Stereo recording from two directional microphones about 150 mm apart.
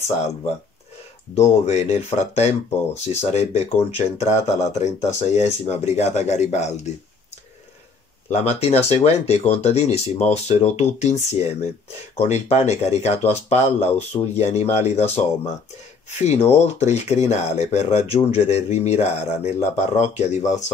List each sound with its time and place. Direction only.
1.3 s speech: 45° left (ahead or behind)
8.3 s speech: 45° left (ahead or behind)